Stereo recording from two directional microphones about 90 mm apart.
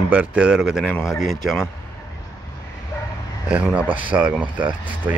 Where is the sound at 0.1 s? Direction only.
15° right (ahead or behind).